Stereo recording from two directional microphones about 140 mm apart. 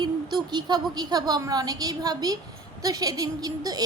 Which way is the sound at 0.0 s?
30° right (ahead or behind).